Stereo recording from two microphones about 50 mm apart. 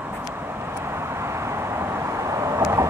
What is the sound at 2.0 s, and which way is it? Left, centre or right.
Vehicle, right.